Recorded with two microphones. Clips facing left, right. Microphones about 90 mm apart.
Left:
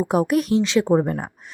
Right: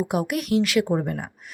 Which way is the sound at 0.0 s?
35° left (ahead or behind).